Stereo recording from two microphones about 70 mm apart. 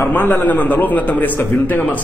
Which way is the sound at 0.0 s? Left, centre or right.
Left.